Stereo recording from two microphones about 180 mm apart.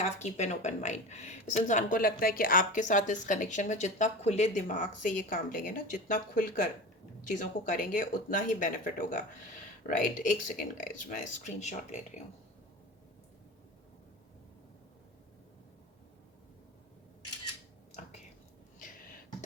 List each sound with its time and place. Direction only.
0.0 s speech: 40° left (ahead or behind)